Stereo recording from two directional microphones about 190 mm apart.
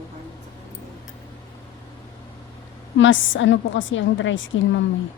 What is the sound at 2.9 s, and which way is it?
A woman's voice, 85° left.